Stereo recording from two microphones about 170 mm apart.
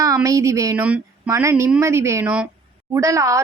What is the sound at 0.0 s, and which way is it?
Speech, 20° right (ahead or behind).